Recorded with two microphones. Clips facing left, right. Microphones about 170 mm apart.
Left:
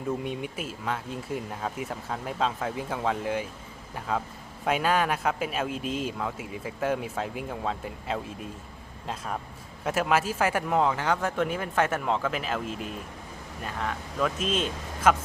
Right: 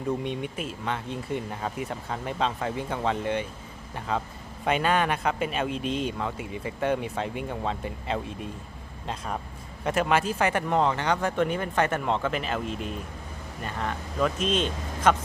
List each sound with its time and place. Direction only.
0.2 s speech: 5° left (ahead or behind)